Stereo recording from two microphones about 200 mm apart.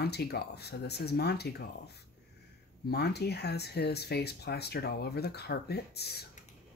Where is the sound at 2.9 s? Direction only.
55° left (ahead or behind).